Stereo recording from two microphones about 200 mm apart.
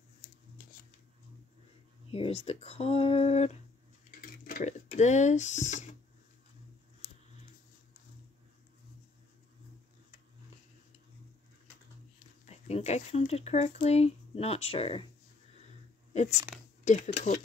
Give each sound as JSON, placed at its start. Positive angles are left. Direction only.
{"t": 2.0, "sound": "speech", "side_deg": 30}
{"t": 4.2, "sound": "speech", "side_deg": 45}
{"t": 12.4, "sound": "speech", "side_deg": 35}
{"t": 16.8, "sound": "speech", "side_deg": 35}